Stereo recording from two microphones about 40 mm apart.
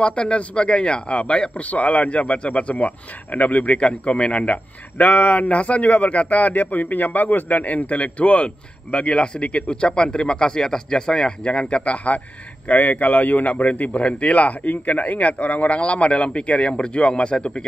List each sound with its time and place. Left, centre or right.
0.0 s a man's voice: left
11.4 s a man's voice: left